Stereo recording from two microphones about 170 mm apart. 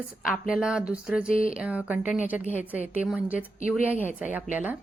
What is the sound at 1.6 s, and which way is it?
A woman's voice, 10° right (ahead or behind).